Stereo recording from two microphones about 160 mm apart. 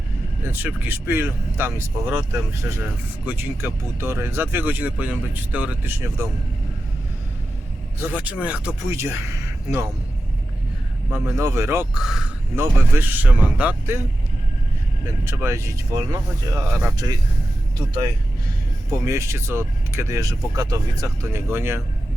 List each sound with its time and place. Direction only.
0.4 s speech: 10° right (ahead or behind)
7.9 s speech: 10° right (ahead or behind)
11.1 s speech: 15° right (ahead or behind)
11.9 s speech: 5° right (ahead or behind)
12.5 s speech: 15° right (ahead or behind)
15.0 s speech: 15° right (ahead or behind)
18.9 s speech: 20° right (ahead or behind)